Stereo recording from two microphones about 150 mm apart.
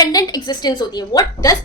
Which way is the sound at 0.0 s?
25° left (ahead or behind).